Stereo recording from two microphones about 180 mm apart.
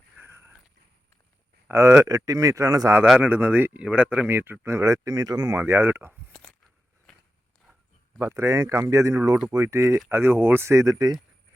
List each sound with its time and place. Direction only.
0.2 s biting: 15° right (ahead or behind)
1.6 s a man's voice: 15° right (ahead or behind)
7.1 s walk: centre (ahead or behind)
8.2 s speech: 15° right (ahead or behind)